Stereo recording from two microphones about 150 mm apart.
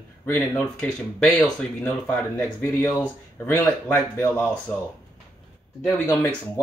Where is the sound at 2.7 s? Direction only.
20° left (ahead or behind).